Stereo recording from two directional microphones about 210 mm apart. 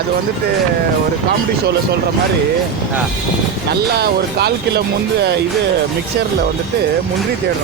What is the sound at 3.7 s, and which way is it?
Speech, 50° right (ahead or behind).